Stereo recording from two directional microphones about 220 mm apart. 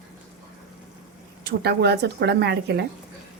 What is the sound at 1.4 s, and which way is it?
A woman's voice, 45° right (ahead or behind).